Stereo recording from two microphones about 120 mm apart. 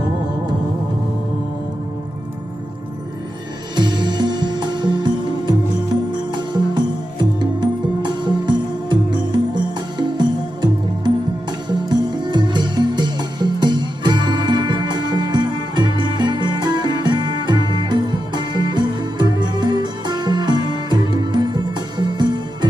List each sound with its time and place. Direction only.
3.8 s music: 40° right (ahead or behind)
7.2 s music: 40° right (ahead or behind)